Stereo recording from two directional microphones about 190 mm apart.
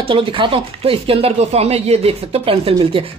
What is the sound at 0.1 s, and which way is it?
Speech, 25° right (ahead or behind).